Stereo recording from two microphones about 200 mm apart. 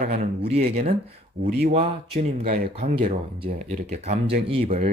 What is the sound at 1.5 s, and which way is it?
Speech, 50° right (ahead or behind).